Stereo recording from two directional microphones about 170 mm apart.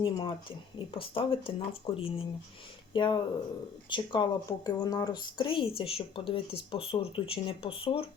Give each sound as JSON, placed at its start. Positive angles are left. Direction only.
{"t": 0.0, "sound": "speech", "side_deg": 30}